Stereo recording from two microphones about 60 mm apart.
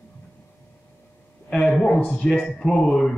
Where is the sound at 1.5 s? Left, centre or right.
Centre.